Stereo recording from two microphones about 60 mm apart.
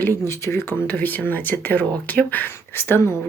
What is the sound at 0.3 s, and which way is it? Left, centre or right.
Speech, left.